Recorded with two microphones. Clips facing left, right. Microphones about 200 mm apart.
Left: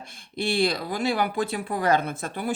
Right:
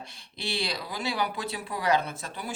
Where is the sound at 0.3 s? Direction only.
50° left (ahead or behind).